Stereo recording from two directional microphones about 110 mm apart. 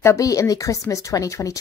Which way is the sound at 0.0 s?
30° left (ahead or behind).